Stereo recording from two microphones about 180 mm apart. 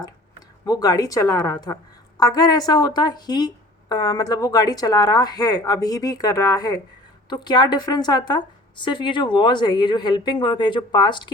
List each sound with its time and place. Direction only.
0.6 s a woman's voice: 20° left (ahead or behind)